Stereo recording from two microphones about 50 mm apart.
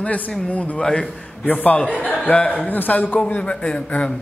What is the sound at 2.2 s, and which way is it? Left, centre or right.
Speech, left.